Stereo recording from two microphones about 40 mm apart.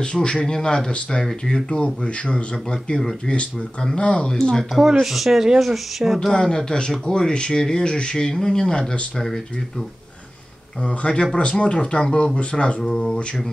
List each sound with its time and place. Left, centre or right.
0.0 s speech: left
2.5 s speech: centre
5.0 s speech: centre
6.1 s speech: centre
10.8 s speech: left
12.8 s speech: centre